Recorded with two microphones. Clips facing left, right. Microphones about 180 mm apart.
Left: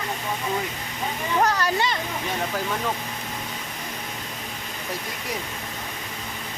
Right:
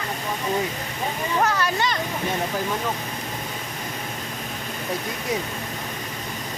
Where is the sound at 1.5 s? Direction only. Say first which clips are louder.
Even; 35° left (ahead or behind).